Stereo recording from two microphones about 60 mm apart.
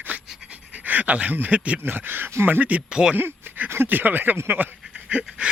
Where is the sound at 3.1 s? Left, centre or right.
Right.